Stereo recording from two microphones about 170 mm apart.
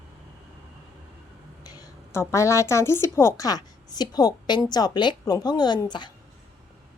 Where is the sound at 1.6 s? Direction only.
20° left (ahead or behind).